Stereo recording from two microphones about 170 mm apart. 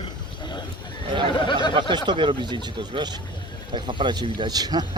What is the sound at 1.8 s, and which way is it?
Speech, 25° right (ahead or behind).